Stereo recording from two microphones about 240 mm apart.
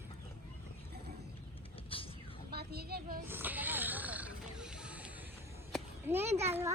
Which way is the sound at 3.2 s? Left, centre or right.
Centre.